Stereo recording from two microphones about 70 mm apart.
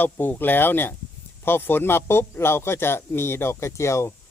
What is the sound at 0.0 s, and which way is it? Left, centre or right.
A man's voice, left.